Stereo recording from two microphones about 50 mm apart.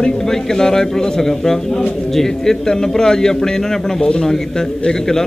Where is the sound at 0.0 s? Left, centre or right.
Centre.